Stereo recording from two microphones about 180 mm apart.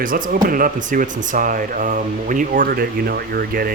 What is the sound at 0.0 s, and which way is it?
Speech, 50° right (ahead or behind).